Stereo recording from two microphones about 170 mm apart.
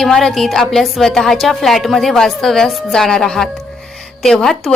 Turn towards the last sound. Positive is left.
turn(degrees=5)  # may be behind; listen again after turning